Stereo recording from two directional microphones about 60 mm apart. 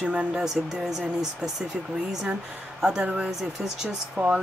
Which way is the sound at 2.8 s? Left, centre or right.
Centre.